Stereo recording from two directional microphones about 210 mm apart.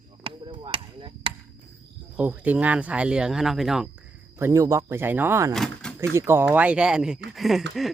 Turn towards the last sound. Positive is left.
turn(degrees=0)  # may be behind; listen again after turning